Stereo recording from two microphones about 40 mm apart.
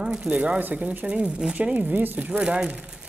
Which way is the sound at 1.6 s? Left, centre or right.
Right.